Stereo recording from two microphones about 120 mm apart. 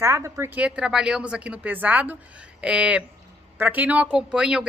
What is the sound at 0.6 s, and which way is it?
Speech, 5° right (ahead or behind).